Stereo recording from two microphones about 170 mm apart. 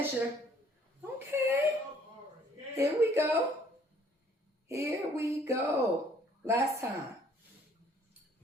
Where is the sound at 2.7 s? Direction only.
15° right (ahead or behind).